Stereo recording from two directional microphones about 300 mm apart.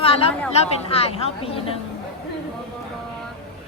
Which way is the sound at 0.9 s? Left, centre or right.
Centre.